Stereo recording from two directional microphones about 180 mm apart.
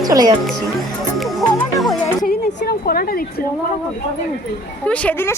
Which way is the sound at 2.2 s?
55° left (ahead or behind).